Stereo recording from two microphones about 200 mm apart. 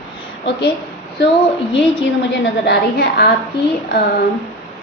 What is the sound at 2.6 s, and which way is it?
Speech, 55° left (ahead or behind).